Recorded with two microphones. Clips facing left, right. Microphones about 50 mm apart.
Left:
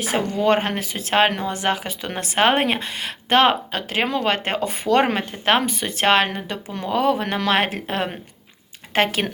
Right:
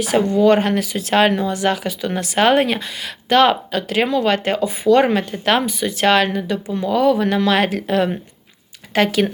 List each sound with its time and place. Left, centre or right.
0.3 s speech: left
5.1 s speech: left